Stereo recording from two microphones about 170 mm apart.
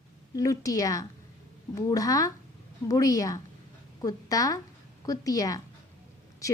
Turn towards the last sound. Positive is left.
turn(degrees=20)  # may be behind; listen again after turning